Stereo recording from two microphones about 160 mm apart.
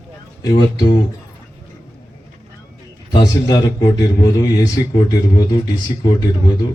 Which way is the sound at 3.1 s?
25° left (ahead or behind).